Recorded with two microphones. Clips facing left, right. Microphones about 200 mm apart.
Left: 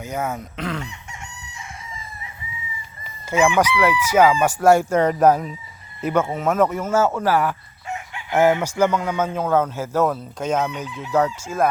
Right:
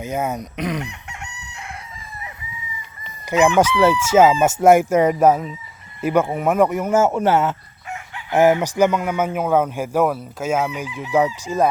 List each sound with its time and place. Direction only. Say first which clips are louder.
0.0 s a man's voice: right 3 dB; 20° right (ahead or behind)
0.9 s chicken: right 2 dB; 65° right (ahead or behind)
3.2 s chicken: right 2 dB; 15° right (ahead or behind); by 5.5 s centre (ahead or behind)
6.0 s a man's voice: right 2 dB; 10° right (ahead or behind)